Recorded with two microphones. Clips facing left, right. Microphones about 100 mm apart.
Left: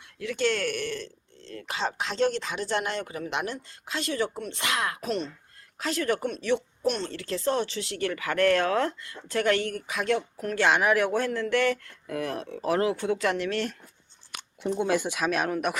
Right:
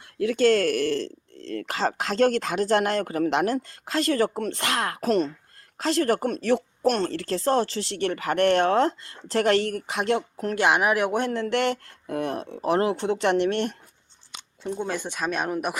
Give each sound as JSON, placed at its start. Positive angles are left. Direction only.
{"t": 0.2, "sound": "speech", "side_deg": -45}
{"t": 1.9, "sound": "speech", "side_deg": -45}
{"t": 10.5, "sound": "speech", "side_deg": -15}
{"t": 11.3, "sound": "speech", "side_deg": -30}
{"t": 12.4, "sound": "speech", "side_deg": -20}
{"t": 12.7, "sound": "speech", "side_deg": -50}
{"t": 13.0, "sound": "speech", "side_deg": -30}
{"t": 14.8, "sound": "speech", "side_deg": 10}
{"t": 15.4, "sound": "speech", "side_deg": -10}